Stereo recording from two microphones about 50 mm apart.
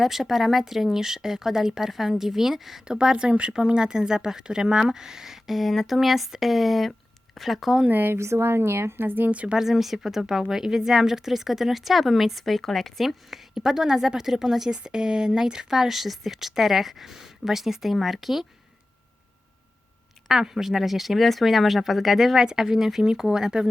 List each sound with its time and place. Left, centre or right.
0.0 s a woman's voice: centre
7.9 s speech: right
8.1 s a woman's voice: right
9.3 s speech: right
9.6 s a woman's voice: centre
13.5 s speech: centre
20.2 s a woman's voice: centre